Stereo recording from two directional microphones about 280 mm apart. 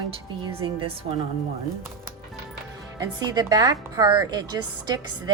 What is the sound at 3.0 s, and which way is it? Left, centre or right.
Speech, centre.